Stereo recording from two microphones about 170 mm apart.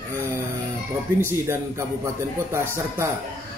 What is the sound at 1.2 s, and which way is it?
A man's voice, 15° right (ahead or behind).